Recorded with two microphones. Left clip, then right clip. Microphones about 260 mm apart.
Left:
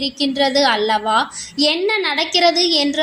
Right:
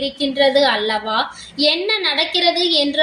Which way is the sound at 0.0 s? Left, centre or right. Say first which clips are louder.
Right 2 dB; left.